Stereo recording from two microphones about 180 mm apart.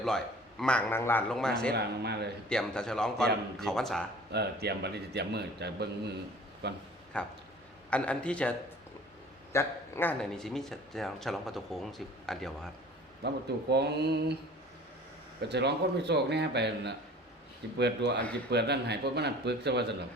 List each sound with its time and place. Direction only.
0.6 s speech: 5° left (ahead or behind)
1.7 s a man's voice: 65° right (ahead or behind)
2.5 s speech: 5° left (ahead or behind)
4.3 s a man's voice: 65° right (ahead or behind)
7.1 s a man's voice: 5° left (ahead or behind)
13.2 s a man's voice: 65° right (ahead or behind)
15.4 s a man's voice: 70° right (ahead or behind)